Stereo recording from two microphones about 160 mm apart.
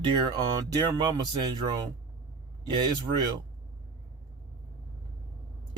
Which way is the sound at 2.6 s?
30° right (ahead or behind).